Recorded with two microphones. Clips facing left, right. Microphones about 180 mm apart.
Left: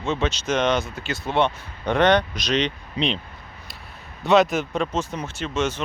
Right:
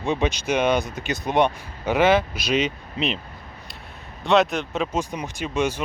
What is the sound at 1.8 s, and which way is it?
Speech, 5° right (ahead or behind).